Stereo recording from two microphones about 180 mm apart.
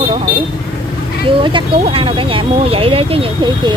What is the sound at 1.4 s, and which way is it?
Speech, 30° right (ahead or behind).